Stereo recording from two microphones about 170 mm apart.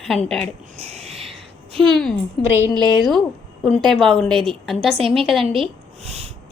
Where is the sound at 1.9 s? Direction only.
5° left (ahead or behind).